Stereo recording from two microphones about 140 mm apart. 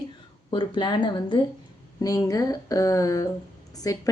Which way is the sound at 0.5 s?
35° left (ahead or behind).